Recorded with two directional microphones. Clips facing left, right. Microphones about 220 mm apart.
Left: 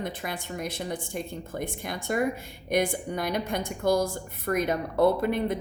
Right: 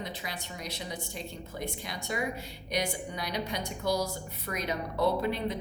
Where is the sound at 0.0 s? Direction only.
55° left (ahead or behind).